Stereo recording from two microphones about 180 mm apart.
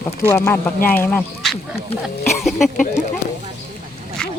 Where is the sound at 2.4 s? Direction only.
Centre (ahead or behind).